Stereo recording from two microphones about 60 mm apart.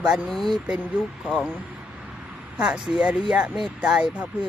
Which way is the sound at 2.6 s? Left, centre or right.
Centre.